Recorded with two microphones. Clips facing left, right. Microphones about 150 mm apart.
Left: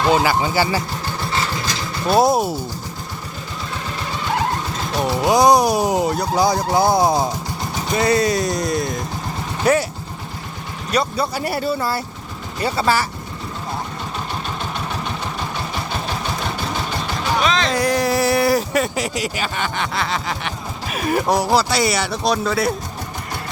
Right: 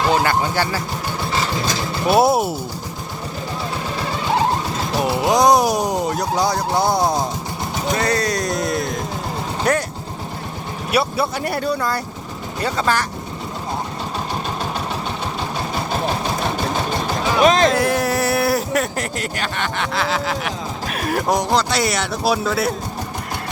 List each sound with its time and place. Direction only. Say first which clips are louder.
0.1 s speech: left 1 dB; 5° left (ahead or behind)
2.0 s speech: even; 5° right (ahead or behind)
4.9 s speech: left 1 dB; 5° right (ahead or behind)
10.9 s speech: right 1 dB; centre (ahead or behind)
17.4 s music: right 8 dB; 45° right (ahead or behind)
17.7 s speech: even; 5° right (ahead or behind)